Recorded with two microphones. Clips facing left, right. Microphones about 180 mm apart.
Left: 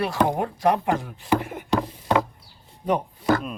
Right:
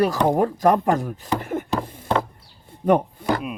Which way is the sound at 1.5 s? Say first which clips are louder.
Right 10 dB; 50° right (ahead or behind).